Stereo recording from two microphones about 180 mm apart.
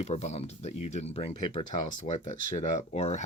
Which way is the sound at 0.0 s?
40° left (ahead or behind).